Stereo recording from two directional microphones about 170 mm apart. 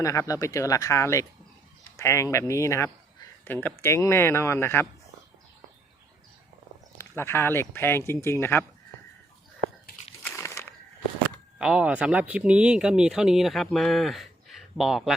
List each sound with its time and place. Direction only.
0.0 s speech: 20° left (ahead or behind)
7.0 s speech: 15° left (ahead or behind)
10.2 s a sound: 15° left (ahead or behind)
11.6 s speech: 5° right (ahead or behind)